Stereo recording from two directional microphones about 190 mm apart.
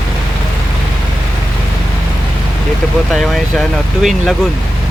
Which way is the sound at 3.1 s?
Centre (ahead or behind).